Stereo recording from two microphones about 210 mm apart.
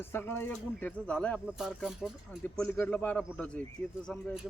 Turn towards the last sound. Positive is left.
turn(degrees=5)  # may be behind; listen again after turning